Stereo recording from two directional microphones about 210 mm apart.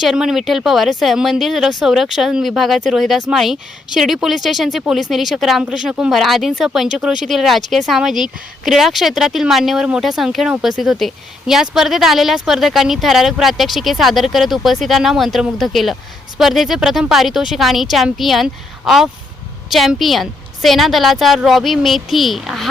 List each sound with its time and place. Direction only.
0.0 s speech: centre (ahead or behind)